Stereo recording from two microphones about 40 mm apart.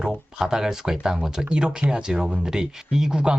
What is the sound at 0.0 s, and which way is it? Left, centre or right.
Speech, centre.